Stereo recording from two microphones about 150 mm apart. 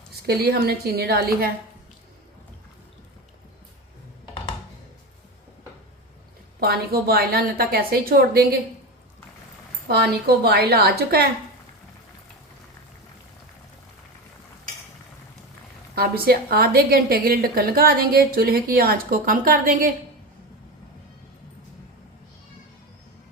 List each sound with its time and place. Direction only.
0.3 s a woman's voice: 90° right
6.6 s a woman's voice: 90° right
9.9 s a woman's voice: 90° right
16.0 s a woman's voice: 90° right; by 19.9 s 65° right (ahead or behind)